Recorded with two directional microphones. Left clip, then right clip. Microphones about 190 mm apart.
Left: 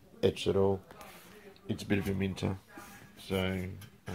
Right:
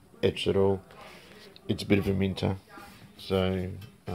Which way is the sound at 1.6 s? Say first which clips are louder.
Right 7 dB; 20° right (ahead or behind).